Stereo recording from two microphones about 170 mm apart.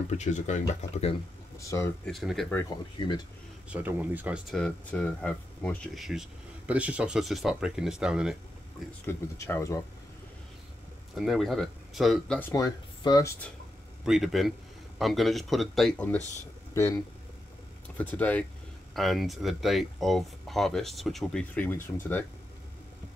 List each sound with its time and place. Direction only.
0.1 s speech: 45° left (ahead or behind)
1.6 s speech: 20° left (ahead or behind)
2.0 s speech: centre (ahead or behind)
3.7 s speech: 10° right (ahead or behind)
9.0 s speech: 15° left (ahead or behind)
11.1 s speech: centre (ahead or behind)
12.4 s speech: 15° left (ahead or behind)
14.0 s speech: centre (ahead or behind)
16.7 s speech: 15° left (ahead or behind)